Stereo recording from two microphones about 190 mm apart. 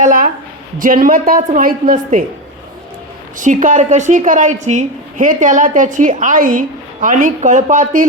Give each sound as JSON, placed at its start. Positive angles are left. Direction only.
{"t": 0.0, "sound": "a woman's voice", "side_deg": -45}
{"t": 3.3, "sound": "a woman's voice", "side_deg": -45}